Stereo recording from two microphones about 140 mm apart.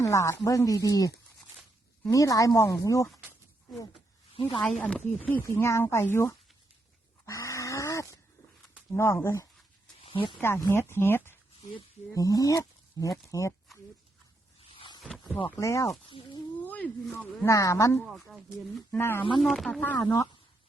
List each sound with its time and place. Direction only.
0.0 s speech: 20° left (ahead or behind)
4.8 s speech: 10° left (ahead or behind)
7.3 s a sound: 20° left (ahead or behind)
9.0 s speech: 20° left (ahead or behind)
10.0 s a sound: 40° left (ahead or behind)
10.3 s speech: 15° left (ahead or behind)
15.4 s speech: 20° left (ahead or behind)
16.0 s speech: 35° left (ahead or behind)
16.6 s a sound: 10° left (ahead or behind)
17.4 s speech: 20° left (ahead or behind)
18.0 s speech: centre (ahead or behind)
18.9 s speech: 15° left (ahead or behind)
19.4 s speech: centre (ahead or behind)
19.8 s speech: 15° left (ahead or behind)